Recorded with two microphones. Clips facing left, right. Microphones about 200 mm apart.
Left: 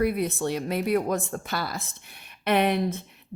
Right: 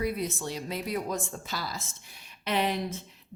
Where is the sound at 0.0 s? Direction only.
60° left (ahead or behind).